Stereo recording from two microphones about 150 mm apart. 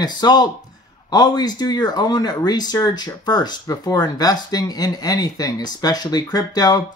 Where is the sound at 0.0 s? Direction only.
30° left (ahead or behind).